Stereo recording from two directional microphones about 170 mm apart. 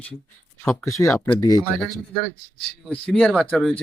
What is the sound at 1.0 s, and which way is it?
Speech, 20° left (ahead or behind).